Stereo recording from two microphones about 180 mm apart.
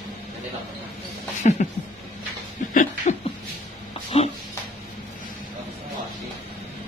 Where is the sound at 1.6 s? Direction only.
45° left (ahead or behind).